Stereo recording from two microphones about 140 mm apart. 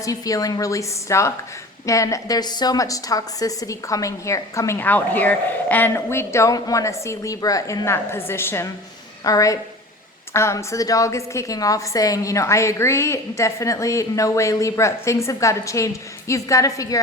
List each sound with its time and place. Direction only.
0.0 s a woman's voice: 25° left (ahead or behind)